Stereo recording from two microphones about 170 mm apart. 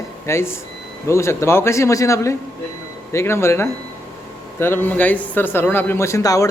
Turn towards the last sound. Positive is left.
turn(degrees=20)  # may be behind; listen again after turning